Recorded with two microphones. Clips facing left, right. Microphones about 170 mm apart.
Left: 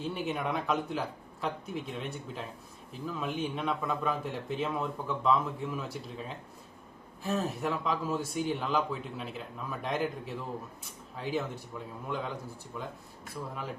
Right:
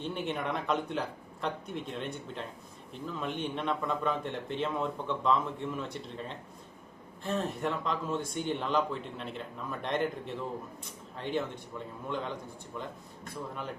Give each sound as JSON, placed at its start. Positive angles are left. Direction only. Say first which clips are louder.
{"t": 0.0, "sound": "speech", "louder": "left 1 dB", "side_deg": 0}